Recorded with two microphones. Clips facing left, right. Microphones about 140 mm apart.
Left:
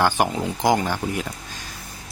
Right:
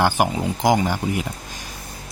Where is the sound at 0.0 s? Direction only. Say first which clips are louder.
Right 1 dB; 10° right (ahead or behind).